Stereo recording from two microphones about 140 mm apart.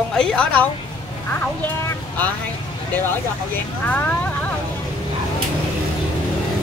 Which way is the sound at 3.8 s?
10° left (ahead or behind).